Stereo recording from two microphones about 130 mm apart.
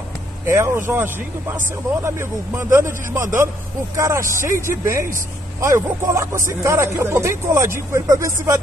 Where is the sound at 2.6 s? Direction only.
20° right (ahead or behind).